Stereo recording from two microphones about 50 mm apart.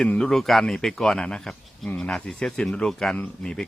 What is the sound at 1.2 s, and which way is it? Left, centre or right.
Speech, centre.